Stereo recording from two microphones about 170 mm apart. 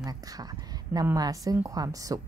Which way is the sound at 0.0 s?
20° right (ahead or behind).